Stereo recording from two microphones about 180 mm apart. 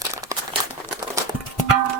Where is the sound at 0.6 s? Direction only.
20° right (ahead or behind).